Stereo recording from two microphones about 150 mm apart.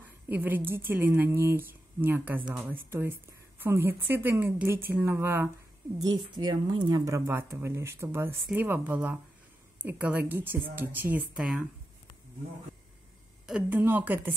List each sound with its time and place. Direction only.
0.3 s speech: 10° right (ahead or behind)
5.9 s speech: 30° right (ahead or behind); by 11.6 s 5° right (ahead or behind)
13.5 s speech: 10° right (ahead or behind)